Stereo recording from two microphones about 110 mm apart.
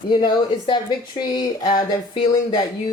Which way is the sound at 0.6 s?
45° left (ahead or behind).